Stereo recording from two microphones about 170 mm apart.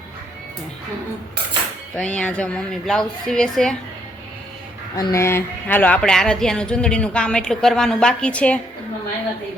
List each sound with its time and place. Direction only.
2.0 s speech: 5° left (ahead or behind)
4.9 s speech: 20° left (ahead or behind)